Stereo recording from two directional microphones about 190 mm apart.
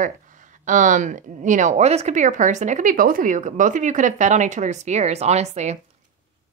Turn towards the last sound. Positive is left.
turn(degrees=-35)  # may be behind; listen again after turning